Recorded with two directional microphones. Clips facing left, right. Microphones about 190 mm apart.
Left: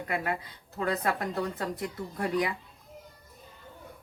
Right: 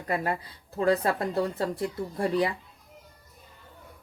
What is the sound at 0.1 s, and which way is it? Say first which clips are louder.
Speech: right 4 dB; 35° right (ahead or behind).